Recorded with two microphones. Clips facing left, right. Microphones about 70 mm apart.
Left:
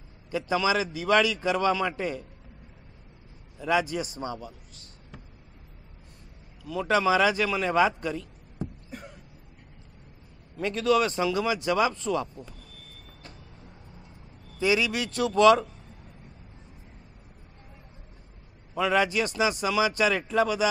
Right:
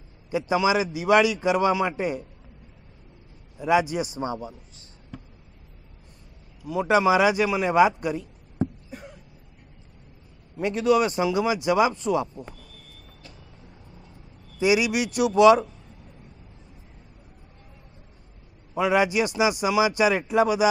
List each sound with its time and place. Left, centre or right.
0.3 s speech: centre
3.5 s a man's voice: centre
6.6 s speech: centre
10.5 s speech: centre
14.6 s speech: centre
18.8 s speech: centre